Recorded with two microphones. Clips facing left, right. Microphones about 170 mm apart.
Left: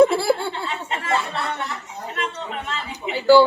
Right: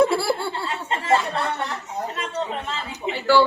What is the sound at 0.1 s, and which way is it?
Laughter, 20° left (ahead or behind).